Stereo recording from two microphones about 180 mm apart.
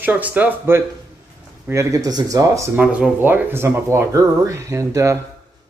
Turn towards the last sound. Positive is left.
turn(degrees=-15)  # may be behind; listen again after turning